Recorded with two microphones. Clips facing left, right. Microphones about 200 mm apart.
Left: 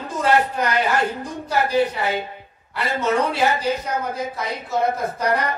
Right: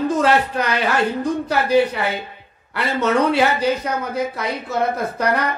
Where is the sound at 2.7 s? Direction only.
70° right (ahead or behind).